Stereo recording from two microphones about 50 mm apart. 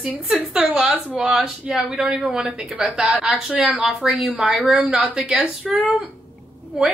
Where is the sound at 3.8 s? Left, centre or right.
Centre.